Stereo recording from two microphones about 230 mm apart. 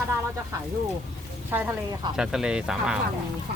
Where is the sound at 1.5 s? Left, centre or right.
Centre.